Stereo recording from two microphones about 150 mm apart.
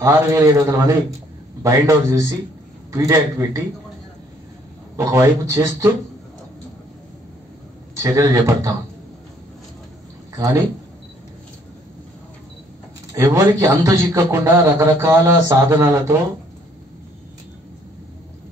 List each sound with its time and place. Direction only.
0.0 s a man's voice: 20° right (ahead or behind)
4.9 s a man's voice: 20° right (ahead or behind)
7.9 s a man's voice: 20° right (ahead or behind)
10.3 s speech: 20° right (ahead or behind)
13.1 s a man's voice: 20° right (ahead or behind)